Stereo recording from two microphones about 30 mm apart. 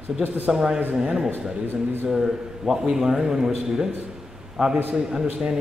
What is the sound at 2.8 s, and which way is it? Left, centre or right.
Speech, centre.